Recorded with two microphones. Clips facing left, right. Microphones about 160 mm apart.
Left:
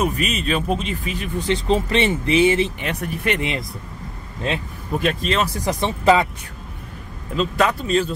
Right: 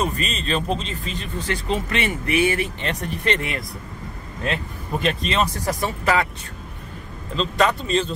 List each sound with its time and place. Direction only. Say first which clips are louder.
0.0 s speech: left 3 dB; 10° left (ahead or behind)
1.7 s speech: left 5 dB; 30° left (ahead or behind)
2.8 s speech: left 1 dB; 10° left (ahead or behind)
3.3 s speech: left 3 dB; 20° left (ahead or behind)
4.9 s speech: left 1 dB; centre (ahead or behind)
5.7 s speech: left 5 dB; 25° left (ahead or behind)
7.3 s speech: left 1 dB; 5° left (ahead or behind)